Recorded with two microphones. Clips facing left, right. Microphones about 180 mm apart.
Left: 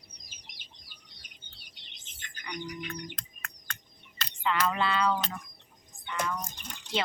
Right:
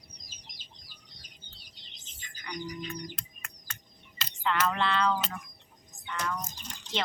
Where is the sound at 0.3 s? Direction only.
65° left (ahead or behind).